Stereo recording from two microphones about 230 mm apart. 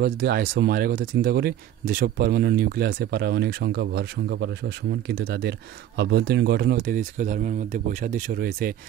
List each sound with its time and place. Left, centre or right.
0.0 s speech: right